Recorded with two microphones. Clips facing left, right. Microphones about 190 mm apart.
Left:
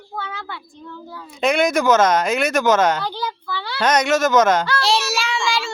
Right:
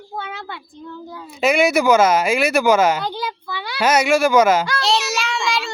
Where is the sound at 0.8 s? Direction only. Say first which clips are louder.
Right 2 dB; 15° right (ahead or behind).